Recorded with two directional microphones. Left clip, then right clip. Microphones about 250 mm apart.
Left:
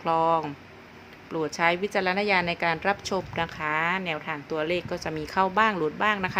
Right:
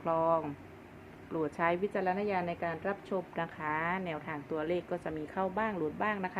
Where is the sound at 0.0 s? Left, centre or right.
Centre.